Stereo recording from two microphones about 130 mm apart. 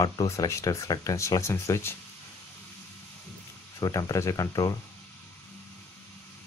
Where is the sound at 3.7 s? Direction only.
25° left (ahead or behind).